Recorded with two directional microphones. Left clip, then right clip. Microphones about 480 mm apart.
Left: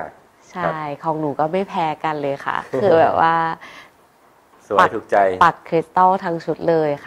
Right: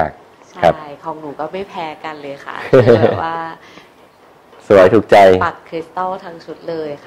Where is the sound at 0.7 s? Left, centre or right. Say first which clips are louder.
Left 4 dB; left.